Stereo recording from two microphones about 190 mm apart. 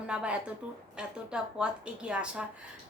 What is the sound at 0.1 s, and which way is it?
A woman's voice, 5° right (ahead or behind).